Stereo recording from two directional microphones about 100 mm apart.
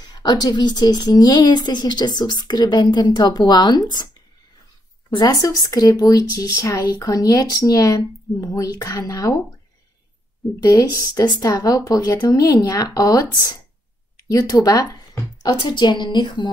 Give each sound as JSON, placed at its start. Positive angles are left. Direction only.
{"t": 0.0, "sound": "a woman's voice", "side_deg": 45}
{"t": 5.3, "sound": "speech", "side_deg": 35}
{"t": 10.6, "sound": "speech", "side_deg": 40}
{"t": 15.6, "sound": "a woman's voice", "side_deg": 50}